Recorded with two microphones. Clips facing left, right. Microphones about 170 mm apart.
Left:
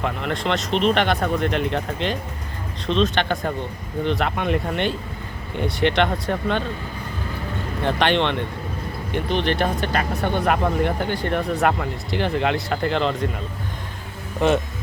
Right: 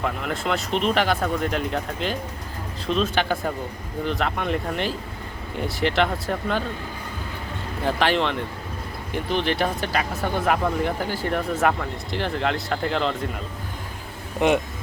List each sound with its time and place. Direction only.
0.0 s speech: 5° right (ahead or behind)
7.9 s speech: 5° right (ahead or behind)
14.4 s speech: 15° right (ahead or behind)